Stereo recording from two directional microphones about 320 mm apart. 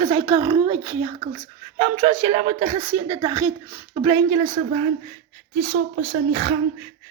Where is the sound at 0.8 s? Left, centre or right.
Centre.